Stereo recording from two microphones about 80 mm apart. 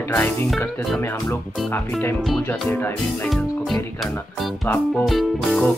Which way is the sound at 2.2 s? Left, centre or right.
Centre.